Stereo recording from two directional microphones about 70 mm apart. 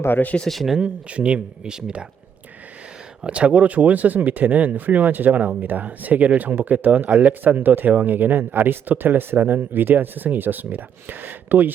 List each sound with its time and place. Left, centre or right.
0.0 s speech: left
0.3 s speech: centre
0.8 s speech: centre
3.2 s speech: centre